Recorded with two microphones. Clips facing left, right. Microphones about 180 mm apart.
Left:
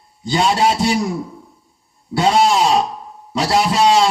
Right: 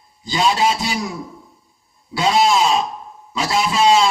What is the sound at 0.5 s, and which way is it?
Speech, 60° left (ahead or behind).